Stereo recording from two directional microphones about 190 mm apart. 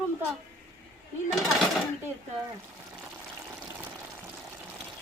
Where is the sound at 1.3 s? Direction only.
Centre (ahead or behind).